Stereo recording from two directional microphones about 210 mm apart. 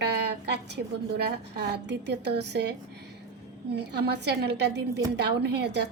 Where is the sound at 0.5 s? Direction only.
55° right (ahead or behind).